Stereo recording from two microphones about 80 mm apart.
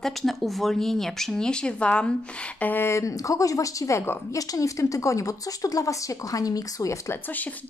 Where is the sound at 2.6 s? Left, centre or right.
Left.